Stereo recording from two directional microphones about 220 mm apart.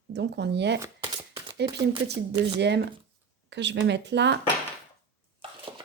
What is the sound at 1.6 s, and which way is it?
Speech, 50° right (ahead or behind).